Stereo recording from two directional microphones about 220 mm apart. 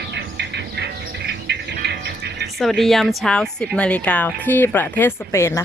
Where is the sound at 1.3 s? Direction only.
50° right (ahead or behind).